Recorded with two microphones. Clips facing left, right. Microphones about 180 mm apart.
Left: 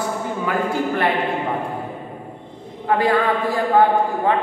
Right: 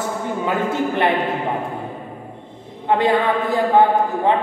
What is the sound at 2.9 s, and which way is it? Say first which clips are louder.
Speech: right 1 dB; 20° right (ahead or behind).